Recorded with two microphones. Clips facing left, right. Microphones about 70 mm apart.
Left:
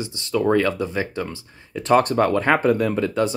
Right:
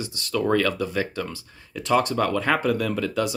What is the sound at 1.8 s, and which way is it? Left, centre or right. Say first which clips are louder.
Speech: left 4 dB; left.